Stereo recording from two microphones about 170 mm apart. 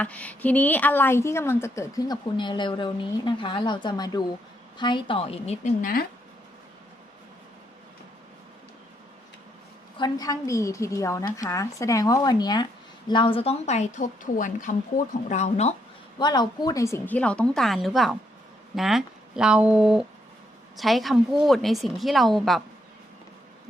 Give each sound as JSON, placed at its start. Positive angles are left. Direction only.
{"t": 0.0, "sound": "a woman's voice", "side_deg": 10}
{"t": 5.8, "sound": "speech", "side_deg": 55}
{"t": 10.0, "sound": "a woman's voice", "side_deg": 20}
{"t": 16.1, "sound": "a woman's voice", "side_deg": 25}